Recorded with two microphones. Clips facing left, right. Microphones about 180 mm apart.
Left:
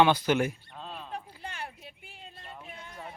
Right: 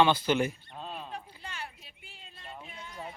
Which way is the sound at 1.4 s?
55° left (ahead or behind).